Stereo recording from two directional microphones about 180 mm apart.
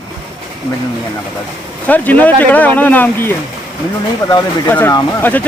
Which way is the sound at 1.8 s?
10° left (ahead or behind).